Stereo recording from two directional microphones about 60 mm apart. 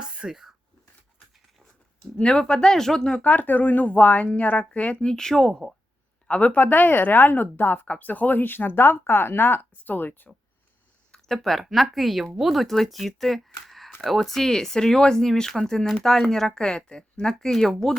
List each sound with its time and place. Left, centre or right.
0.0 s speech: centre
2.1 s speech: centre
3.2 s speech: left; by 5.6 s centre
6.2 s speech: left
11.1 s a sound: centre
11.6 s speech: centre